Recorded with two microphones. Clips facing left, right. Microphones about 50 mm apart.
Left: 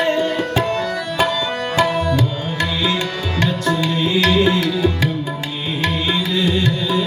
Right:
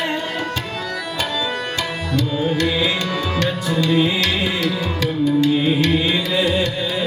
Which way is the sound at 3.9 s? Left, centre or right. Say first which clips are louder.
Right 3 dB; centre.